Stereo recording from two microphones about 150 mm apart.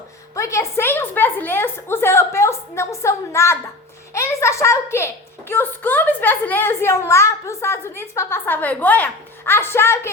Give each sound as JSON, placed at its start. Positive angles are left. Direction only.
{"t": 0.3, "sound": "a woman's voice", "side_deg": 20}